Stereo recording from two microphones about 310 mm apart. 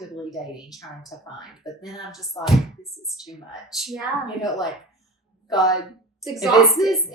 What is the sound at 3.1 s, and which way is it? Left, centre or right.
A woman's voice, centre.